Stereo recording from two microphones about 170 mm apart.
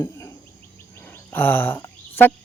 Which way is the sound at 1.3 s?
10° left (ahead or behind).